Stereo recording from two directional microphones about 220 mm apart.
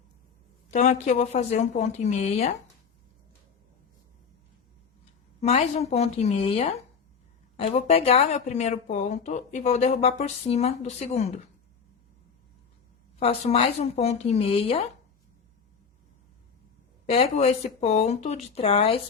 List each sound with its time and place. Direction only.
0.7 s speech: 35° left (ahead or behind)
5.4 s speech: 30° left (ahead or behind)
13.1 s speech: 25° left (ahead or behind)
17.1 s speech: 25° left (ahead or behind)